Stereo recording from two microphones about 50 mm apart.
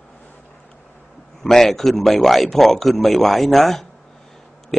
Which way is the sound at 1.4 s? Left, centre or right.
Centre.